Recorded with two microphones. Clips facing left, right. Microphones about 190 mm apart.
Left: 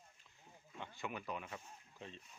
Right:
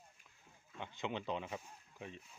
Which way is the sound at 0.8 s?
20° right (ahead or behind).